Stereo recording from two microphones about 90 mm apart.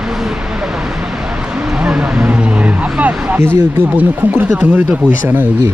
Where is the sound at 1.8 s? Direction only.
15° right (ahead or behind).